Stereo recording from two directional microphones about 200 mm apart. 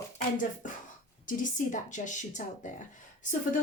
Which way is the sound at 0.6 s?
40° left (ahead or behind).